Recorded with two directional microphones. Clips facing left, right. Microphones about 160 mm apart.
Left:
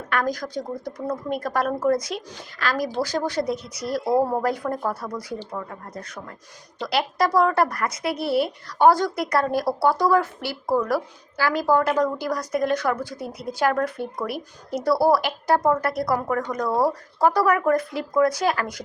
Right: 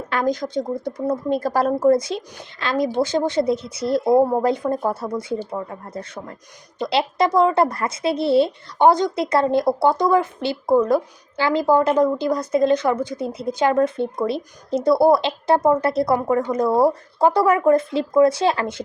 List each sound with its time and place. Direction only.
0.1 s speech: 25° right (ahead or behind)